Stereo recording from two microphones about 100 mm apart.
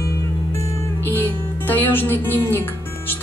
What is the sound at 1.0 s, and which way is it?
Speech, 20° left (ahead or behind).